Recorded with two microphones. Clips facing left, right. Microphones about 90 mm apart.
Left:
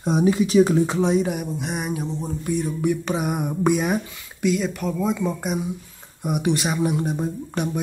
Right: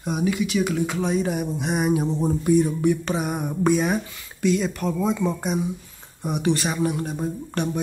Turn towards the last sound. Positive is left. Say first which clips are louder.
# even
turn(degrees=10)  # may be behind; listen again after turning